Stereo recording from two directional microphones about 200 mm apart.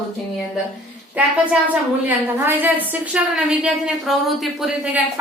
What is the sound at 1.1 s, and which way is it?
A woman's voice, 5° right (ahead or behind).